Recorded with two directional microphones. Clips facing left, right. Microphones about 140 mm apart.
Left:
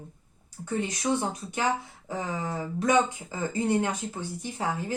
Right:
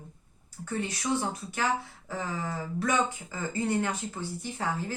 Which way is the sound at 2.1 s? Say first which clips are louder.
Left 2 dB; 20° left (ahead or behind).